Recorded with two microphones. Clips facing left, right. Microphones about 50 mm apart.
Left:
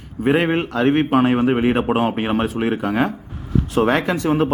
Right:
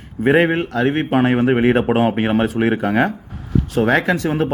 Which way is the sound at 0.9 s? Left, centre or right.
Centre.